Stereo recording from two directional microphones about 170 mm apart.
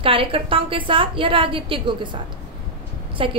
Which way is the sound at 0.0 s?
30° right (ahead or behind).